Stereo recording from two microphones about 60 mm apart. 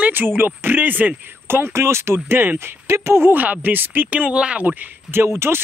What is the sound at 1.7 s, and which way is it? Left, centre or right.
Speech, right.